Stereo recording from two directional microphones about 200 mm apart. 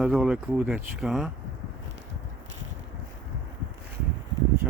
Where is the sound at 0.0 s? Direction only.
5° right (ahead or behind).